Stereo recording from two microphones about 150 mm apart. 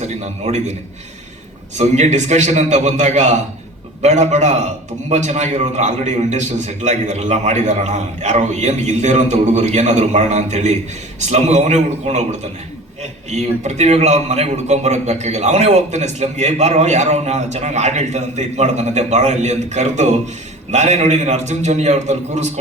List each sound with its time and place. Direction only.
0.0 s a man's voice: 50° right (ahead or behind)